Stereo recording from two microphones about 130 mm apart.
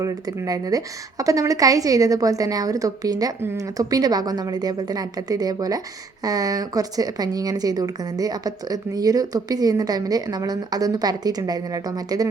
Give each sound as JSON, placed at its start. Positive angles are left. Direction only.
{"t": 0.0, "sound": "speech", "side_deg": -25}